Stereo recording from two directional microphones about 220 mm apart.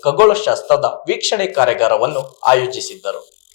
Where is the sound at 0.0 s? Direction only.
15° left (ahead or behind).